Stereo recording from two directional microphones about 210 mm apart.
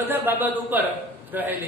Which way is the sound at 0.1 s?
10° right (ahead or behind).